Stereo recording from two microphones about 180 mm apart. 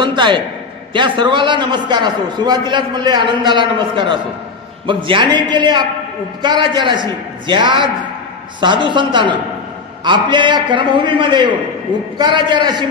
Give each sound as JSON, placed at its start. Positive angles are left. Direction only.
{"t": 0.0, "sound": "a man's voice", "side_deg": -25}